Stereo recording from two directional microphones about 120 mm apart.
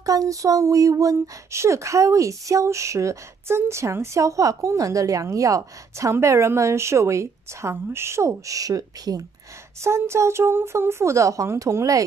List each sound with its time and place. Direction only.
0.0 s speech: 30° right (ahead or behind)